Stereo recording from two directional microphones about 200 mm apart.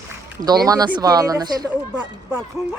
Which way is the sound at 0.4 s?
20° right (ahead or behind).